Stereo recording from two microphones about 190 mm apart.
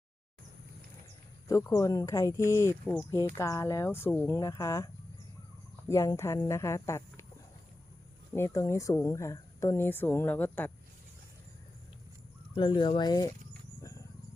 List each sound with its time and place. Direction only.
1.5 s speech: 15° left (ahead or behind)
5.9 s speech: 15° left (ahead or behind)
8.3 s speech: 15° left (ahead or behind)
12.5 s speech: 25° left (ahead or behind)